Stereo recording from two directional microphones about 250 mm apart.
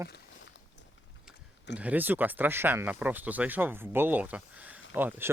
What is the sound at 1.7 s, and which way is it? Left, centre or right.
Speech, centre.